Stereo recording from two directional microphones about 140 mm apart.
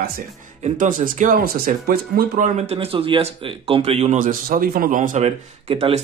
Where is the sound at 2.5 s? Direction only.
45° right (ahead or behind).